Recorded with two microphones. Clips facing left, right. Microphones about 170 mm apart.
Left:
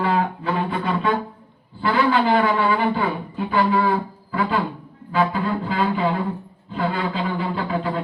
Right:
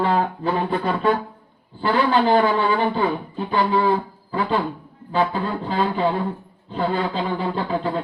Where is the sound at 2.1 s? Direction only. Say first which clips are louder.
Right 4 dB; 35° right (ahead or behind).